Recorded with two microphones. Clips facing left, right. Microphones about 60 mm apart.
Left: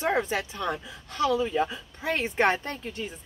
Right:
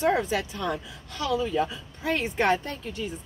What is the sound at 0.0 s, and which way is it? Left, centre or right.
A woman's voice, left.